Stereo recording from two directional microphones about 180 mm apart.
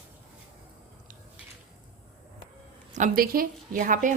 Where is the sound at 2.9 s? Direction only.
50° right (ahead or behind).